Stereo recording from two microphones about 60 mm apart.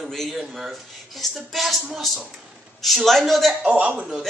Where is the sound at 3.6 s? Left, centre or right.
Centre.